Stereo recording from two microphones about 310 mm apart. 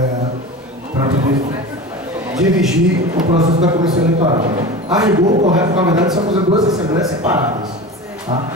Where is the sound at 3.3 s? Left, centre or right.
Centre.